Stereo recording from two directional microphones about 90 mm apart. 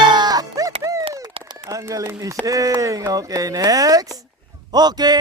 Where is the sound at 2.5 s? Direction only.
40° right (ahead or behind).